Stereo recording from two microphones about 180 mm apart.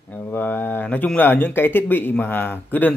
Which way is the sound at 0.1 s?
10° left (ahead or behind).